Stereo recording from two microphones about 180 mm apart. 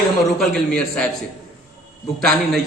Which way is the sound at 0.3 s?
5° left (ahead or behind).